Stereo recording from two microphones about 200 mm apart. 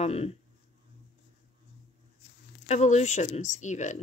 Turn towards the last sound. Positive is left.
turn(degrees=35)  # may be behind; listen again after turning